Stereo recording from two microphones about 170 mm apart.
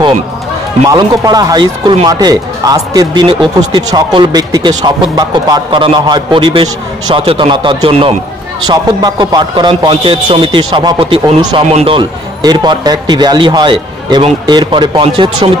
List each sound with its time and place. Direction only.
0.8 s a man's voice: 20° right (ahead or behind)